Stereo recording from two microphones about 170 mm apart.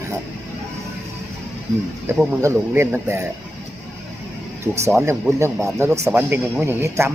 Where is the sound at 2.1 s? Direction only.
15° right (ahead or behind).